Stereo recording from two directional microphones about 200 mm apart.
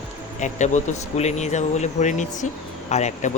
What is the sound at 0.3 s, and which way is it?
Speech, 35° left (ahead or behind).